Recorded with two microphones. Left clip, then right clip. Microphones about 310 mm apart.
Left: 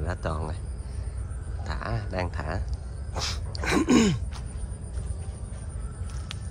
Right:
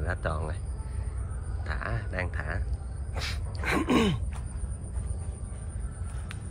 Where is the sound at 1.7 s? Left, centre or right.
Centre.